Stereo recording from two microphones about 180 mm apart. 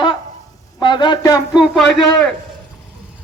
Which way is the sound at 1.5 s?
Centre (ahead or behind).